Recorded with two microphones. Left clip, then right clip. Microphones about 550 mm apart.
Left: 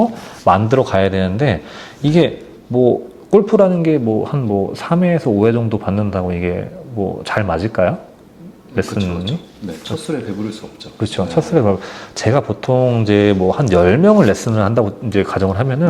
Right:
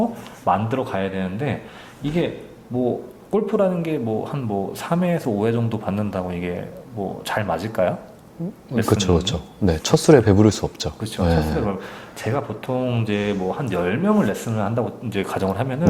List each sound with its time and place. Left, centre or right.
0.4 s speech: left
9.6 s speech: right
11.0 s speech: left